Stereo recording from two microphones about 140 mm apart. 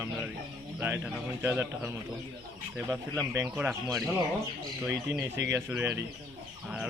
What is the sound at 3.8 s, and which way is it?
Speech, centre (ahead or behind).